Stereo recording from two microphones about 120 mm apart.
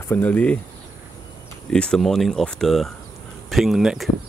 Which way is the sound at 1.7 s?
5° left (ahead or behind).